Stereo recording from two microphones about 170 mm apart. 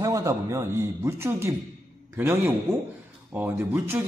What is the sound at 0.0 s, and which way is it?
A man's voice, 20° right (ahead or behind).